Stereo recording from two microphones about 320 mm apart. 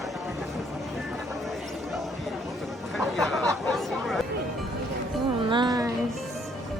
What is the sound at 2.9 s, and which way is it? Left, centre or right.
Chatter, centre.